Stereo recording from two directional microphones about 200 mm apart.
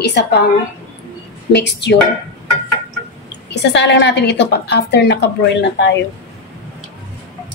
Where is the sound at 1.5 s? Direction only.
60° left (ahead or behind).